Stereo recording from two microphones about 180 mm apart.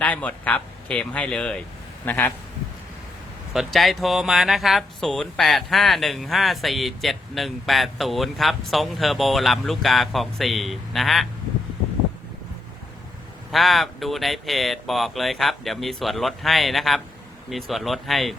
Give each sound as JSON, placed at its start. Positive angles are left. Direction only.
{"t": 0.0, "sound": "speech", "side_deg": 10}
{"t": 3.5, "sound": "speech", "side_deg": 0}
{"t": 13.5, "sound": "speech", "side_deg": 0}